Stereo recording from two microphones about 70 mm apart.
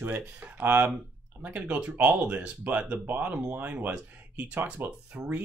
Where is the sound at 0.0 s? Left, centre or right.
Right.